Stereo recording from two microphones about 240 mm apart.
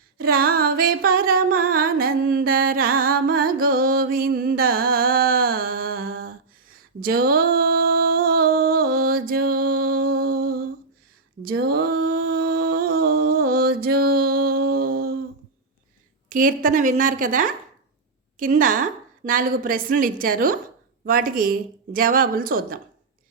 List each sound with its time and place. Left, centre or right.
0.2 s music: right
11.4 s a sound: right
12.0 s music: right
16.3 s a woman's voice: right